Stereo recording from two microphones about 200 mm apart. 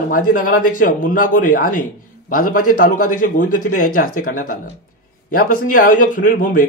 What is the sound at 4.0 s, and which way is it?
Speech, 90° left.